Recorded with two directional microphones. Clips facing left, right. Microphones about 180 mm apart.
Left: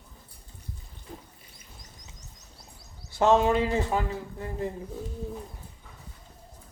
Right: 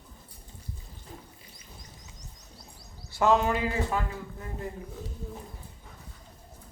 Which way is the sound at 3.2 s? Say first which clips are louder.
Left 3 dB; 25° left (ahead or behind).